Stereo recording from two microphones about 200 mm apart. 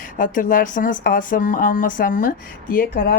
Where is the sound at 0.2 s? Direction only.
40° left (ahead or behind).